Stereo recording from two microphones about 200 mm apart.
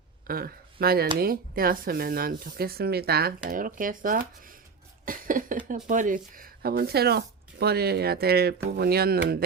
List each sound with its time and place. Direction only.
0.3 s speech: 50° right (ahead or behind)
5.0 s cough: 45° right (ahead or behind)
5.6 s speech: 40° right (ahead or behind)